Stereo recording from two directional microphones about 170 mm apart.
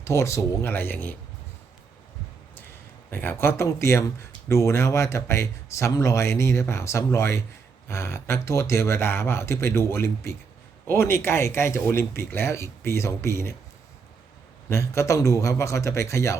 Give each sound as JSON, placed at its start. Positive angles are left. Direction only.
{"t": 0.0, "sound": "speech", "side_deg": 15}
{"t": 3.1, "sound": "speech", "side_deg": 10}
{"t": 14.7, "sound": "speech", "side_deg": 15}